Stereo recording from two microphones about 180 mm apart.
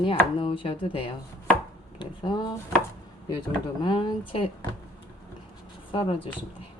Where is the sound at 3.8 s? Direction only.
25° left (ahead or behind).